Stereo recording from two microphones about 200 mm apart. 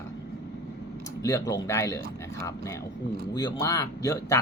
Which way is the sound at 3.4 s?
20° left (ahead or behind).